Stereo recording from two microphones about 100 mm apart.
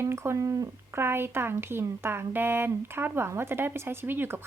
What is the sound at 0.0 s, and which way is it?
Speech, 25° right (ahead or behind).